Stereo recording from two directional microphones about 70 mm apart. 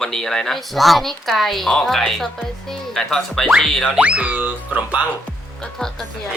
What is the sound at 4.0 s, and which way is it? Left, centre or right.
Music, centre.